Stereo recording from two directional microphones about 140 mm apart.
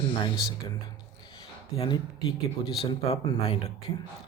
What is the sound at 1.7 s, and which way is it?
Speech, 40° left (ahead or behind).